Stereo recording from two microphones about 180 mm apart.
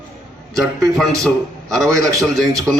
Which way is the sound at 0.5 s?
Centre (ahead or behind).